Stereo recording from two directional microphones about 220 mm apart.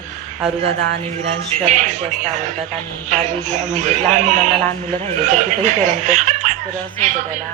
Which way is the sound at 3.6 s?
35° right (ahead or behind).